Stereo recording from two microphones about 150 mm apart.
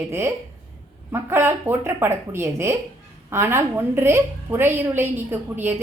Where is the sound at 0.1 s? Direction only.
15° right (ahead or behind).